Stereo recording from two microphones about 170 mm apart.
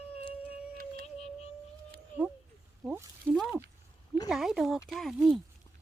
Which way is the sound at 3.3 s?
10° left (ahead or behind).